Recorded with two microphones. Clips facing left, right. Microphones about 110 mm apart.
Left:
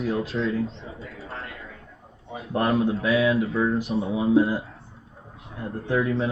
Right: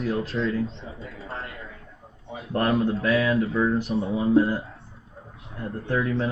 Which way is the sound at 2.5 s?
Centre (ahead or behind).